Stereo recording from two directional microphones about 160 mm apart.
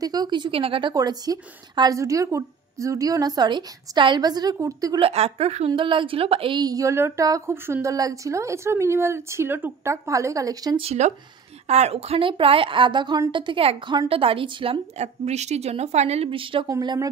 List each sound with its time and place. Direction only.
0.0 s a woman's voice: 25° right (ahead or behind)
5.0 s a woman's voice: 40° right (ahead or behind); by 10.8 s 25° right (ahead or behind)
10.8 s a woman's voice: 45° right (ahead or behind); by 17.1 s 25° right (ahead or behind)